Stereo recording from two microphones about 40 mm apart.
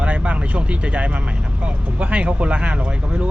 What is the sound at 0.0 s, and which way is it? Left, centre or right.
Speech, right.